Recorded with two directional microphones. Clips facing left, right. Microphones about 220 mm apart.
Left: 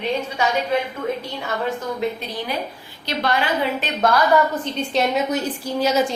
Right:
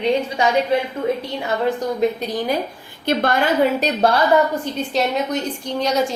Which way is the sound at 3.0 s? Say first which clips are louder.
Right 4 dB; 50° right (ahead or behind).